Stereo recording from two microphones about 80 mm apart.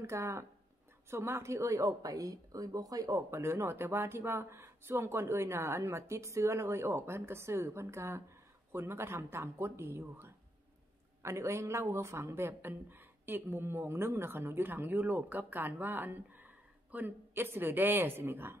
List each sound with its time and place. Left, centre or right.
0.0 s speech: right